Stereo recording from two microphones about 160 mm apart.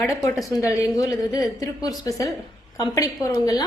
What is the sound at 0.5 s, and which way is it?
A woman's voice, 20° left (ahead or behind).